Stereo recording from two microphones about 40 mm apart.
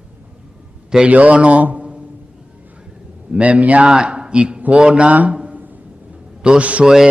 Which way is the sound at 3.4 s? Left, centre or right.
Right.